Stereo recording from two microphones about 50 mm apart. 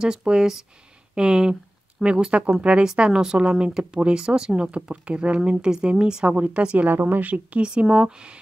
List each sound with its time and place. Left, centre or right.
0.0 s speech: centre
6.3 s speech: right
6.9 s a woman's voice: right
7.2 s speech: right